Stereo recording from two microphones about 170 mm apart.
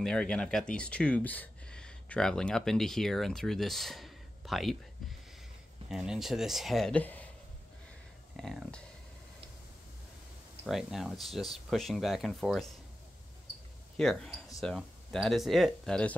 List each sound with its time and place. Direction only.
0.0 s speech: 5° left (ahead or behind)
5.9 s speech: centre (ahead or behind)
8.4 s speech: centre (ahead or behind)
10.6 s speech: centre (ahead or behind)
13.9 s speech: 5° left (ahead or behind)